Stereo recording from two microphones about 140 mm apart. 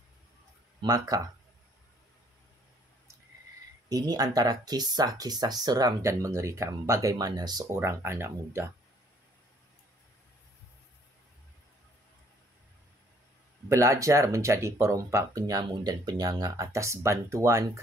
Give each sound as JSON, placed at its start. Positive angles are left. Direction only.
{"t": 0.7, "sound": "speech", "side_deg": -25}
{"t": 3.9, "sound": "speech", "side_deg": -30}
{"t": 7.7, "sound": "speech", "side_deg": -20}
{"t": 13.7, "sound": "speech", "side_deg": -20}